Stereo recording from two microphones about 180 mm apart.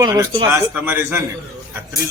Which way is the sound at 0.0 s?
20° right (ahead or behind).